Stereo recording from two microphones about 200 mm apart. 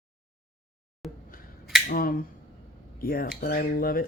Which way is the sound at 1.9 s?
45° left (ahead or behind).